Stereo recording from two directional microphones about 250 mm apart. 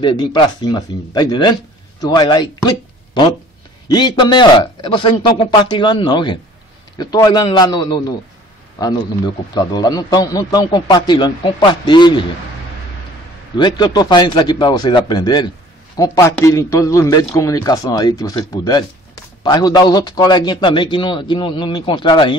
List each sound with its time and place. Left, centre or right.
0.0 s a man's voice: centre
3.9 s a man's voice: centre
13.6 s a man's voice: centre